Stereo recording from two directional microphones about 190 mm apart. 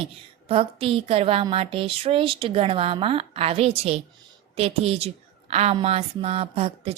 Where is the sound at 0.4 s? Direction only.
30° right (ahead or behind).